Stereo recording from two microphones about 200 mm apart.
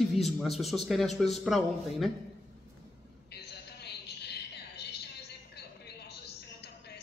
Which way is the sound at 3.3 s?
55° left (ahead or behind).